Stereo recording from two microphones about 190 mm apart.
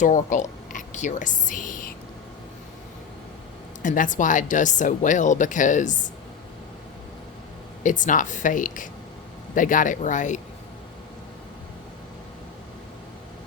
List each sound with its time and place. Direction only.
0.0 s a woman's voice: 40° left (ahead or behind)
3.8 s a woman's voice: 45° left (ahead or behind)
7.9 s a woman's voice: 40° left (ahead or behind)